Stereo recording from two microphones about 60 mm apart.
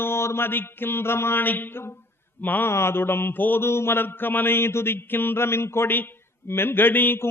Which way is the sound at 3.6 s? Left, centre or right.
Left.